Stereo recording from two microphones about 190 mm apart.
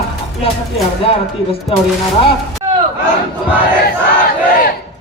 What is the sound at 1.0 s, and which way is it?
Speech, 30° left (ahead or behind).